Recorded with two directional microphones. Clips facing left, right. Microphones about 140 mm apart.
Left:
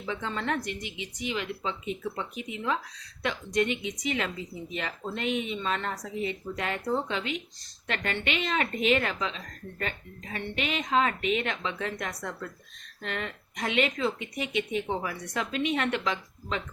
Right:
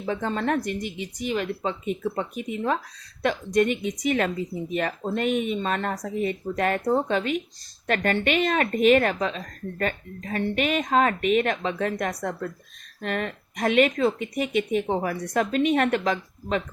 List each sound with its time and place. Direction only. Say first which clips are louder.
0.0 s a woman's voice: right 6 dB; 45° right (ahead or behind)